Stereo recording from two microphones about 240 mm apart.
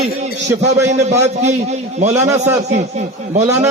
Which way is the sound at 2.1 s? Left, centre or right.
Centre.